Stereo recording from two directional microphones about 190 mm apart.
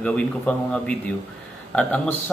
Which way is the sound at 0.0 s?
5° left (ahead or behind).